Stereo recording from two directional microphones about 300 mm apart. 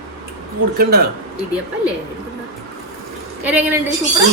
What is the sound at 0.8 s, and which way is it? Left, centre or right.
Speech, right.